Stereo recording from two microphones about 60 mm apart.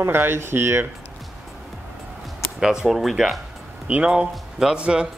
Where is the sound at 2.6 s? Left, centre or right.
Centre.